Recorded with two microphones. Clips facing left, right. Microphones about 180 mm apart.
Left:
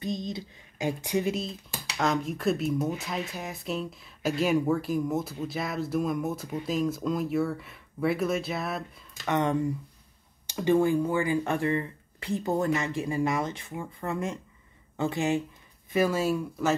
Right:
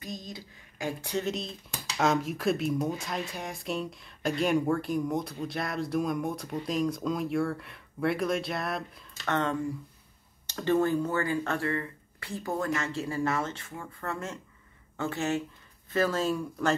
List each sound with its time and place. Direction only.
0.0 s a sound: 25° left (ahead or behind)
2.0 s speech: 5° right (ahead or behind)
9.3 s speech: 15° left (ahead or behind)